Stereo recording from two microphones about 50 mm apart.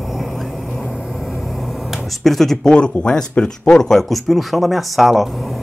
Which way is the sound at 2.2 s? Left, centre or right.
Centre.